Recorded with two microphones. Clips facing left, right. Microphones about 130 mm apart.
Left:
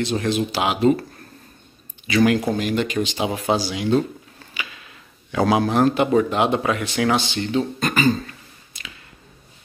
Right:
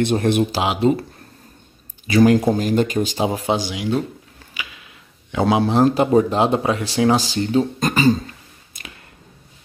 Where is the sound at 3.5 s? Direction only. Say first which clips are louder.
Left 1 dB; 15° right (ahead or behind); by 8.2 s 35° right (ahead or behind).